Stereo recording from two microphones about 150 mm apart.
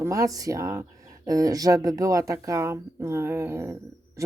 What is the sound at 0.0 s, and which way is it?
Speech, 20° right (ahead or behind).